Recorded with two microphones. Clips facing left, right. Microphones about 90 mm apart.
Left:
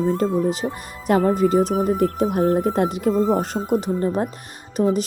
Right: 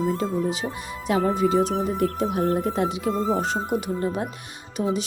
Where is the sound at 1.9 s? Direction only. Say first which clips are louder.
Left 4 dB; 50° left (ahead or behind).